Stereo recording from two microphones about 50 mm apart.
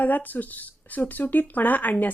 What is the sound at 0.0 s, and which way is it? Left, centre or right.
Speech, left.